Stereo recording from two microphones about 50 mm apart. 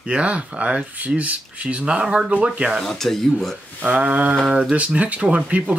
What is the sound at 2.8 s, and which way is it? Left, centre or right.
Speech, centre.